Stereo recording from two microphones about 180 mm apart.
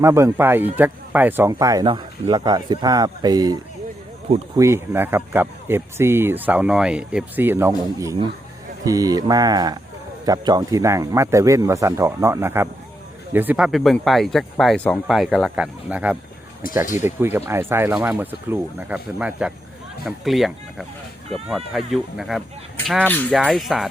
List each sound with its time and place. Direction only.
0.0 s speech: 15° right (ahead or behind); by 23.9 s centre (ahead or behind)